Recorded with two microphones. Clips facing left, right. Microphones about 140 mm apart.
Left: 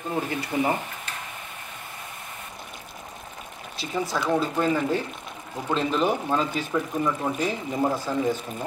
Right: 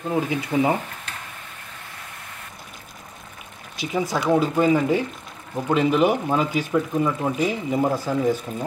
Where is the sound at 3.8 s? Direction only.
15° right (ahead or behind).